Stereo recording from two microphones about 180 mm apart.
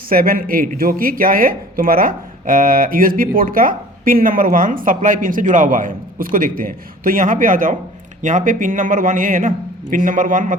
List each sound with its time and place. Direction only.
0.1 s speech: 50° right (ahead or behind)